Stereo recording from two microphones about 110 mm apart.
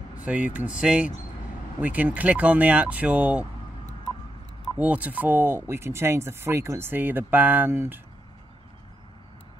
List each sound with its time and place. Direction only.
0.2 s speech: 15° right (ahead or behind)
4.7 s speech: 15° right (ahead or behind)